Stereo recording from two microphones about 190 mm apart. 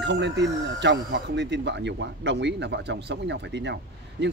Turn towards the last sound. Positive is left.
turn(degrees=-65)  # may be behind; listen again after turning